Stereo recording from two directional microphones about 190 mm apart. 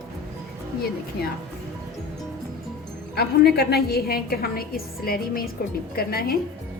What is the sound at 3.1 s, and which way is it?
A woman's voice, 55° left (ahead or behind).